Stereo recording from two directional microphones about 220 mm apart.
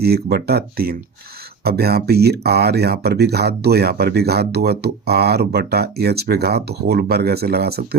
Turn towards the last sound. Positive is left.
turn(degrees=-45)  # may be behind; listen again after turning